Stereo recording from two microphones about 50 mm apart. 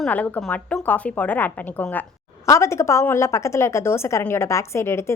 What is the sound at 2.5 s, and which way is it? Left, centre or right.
A woman's voice, left.